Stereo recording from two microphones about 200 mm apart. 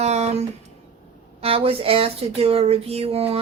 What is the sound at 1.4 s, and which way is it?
Speech, 30° right (ahead or behind).